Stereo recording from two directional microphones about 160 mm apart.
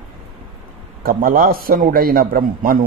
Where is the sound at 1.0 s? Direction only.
60° right (ahead or behind).